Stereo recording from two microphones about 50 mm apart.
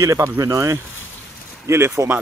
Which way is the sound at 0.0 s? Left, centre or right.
Right.